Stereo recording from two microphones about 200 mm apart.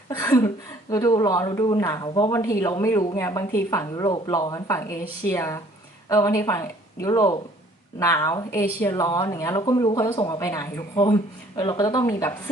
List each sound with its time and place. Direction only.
0.2 s speech: 15° left (ahead or behind)